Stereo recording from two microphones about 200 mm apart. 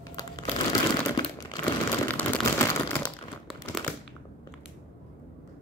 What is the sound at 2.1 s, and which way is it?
Crumpling, 10° left (ahead or behind).